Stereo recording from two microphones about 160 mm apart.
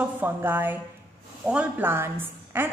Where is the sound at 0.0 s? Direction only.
10° right (ahead or behind).